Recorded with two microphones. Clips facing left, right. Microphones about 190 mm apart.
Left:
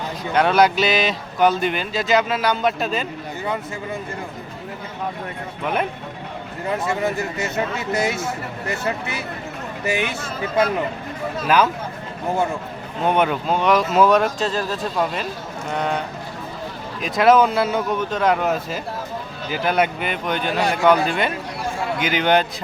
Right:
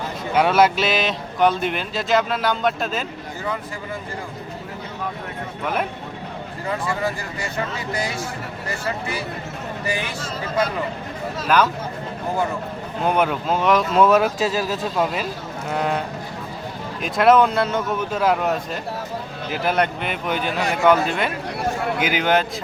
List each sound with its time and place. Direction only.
0.3 s speech: 5° right (ahead or behind)
6.8 s speech: 20° left (ahead or behind)
9.8 s speech: 25° left (ahead or behind)
11.4 s speech: 5° left (ahead or behind)
13.1 s speech: centre (ahead or behind)